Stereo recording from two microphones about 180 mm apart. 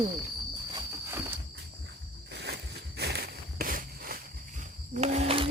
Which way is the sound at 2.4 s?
65° right (ahead or behind).